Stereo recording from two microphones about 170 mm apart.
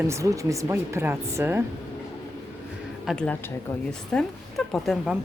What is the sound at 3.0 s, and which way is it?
Speech, centre (ahead or behind).